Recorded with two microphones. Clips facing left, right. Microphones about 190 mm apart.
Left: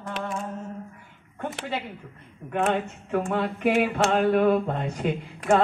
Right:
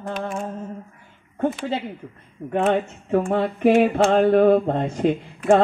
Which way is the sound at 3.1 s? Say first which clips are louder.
Right 5 dB; 40° right (ahead or behind).